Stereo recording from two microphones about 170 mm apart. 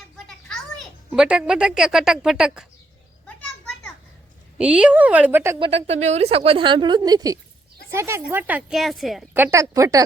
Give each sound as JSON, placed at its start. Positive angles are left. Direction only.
{"t": 0.3, "sound": "a child's voice", "side_deg": 0}
{"t": 3.2, "sound": "a sound", "side_deg": 5}
{"t": 4.5, "sound": "speech", "side_deg": -5}
{"t": 5.5, "sound": "a woman's voice", "side_deg": -30}
{"t": 9.3, "sound": "speech", "side_deg": -15}